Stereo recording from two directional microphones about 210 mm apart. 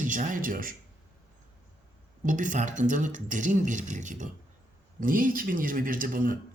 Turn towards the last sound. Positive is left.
turn(degrees=-40)  # may be behind; listen again after turning